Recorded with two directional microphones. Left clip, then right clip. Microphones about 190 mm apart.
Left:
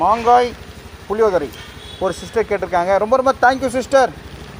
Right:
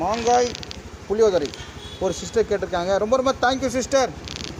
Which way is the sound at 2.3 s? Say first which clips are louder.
Left 2 dB; 20° left (ahead or behind).